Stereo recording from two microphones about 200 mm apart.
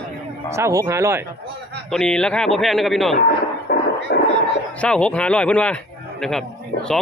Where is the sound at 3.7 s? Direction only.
50° left (ahead or behind).